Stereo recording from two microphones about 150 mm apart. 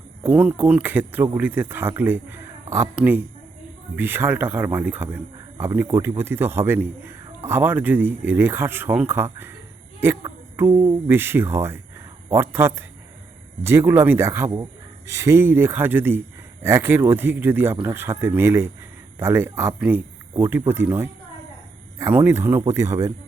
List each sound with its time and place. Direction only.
0.3 s a man's voice: 10° right (ahead or behind)